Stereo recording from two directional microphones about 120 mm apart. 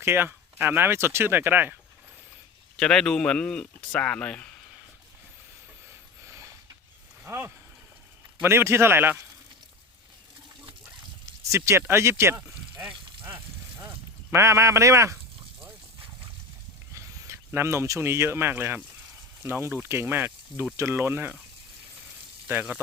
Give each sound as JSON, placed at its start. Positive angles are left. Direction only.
{"t": 0.0, "sound": "speech", "side_deg": -20}
{"t": 2.7, "sound": "speech", "side_deg": 5}
{"t": 6.2, "sound": "a sound", "side_deg": -25}
{"t": 7.3, "sound": "speech", "side_deg": -20}
{"t": 11.4, "sound": "speech", "side_deg": -25}
{"t": 16.9, "sound": "speech", "side_deg": -25}